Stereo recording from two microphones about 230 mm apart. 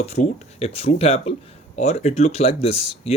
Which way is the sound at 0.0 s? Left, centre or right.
Left.